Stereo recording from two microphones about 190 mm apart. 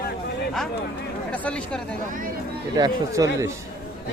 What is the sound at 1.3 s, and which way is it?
Speech, 5° left (ahead or behind).